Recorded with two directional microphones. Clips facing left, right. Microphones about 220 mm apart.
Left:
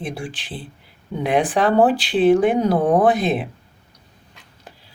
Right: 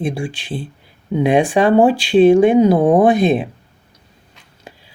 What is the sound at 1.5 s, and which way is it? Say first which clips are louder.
Speech: right 4 dB; 10° right (ahead or behind).